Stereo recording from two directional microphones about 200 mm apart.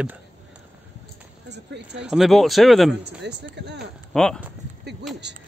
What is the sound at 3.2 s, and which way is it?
Speech, 60° right (ahead or behind).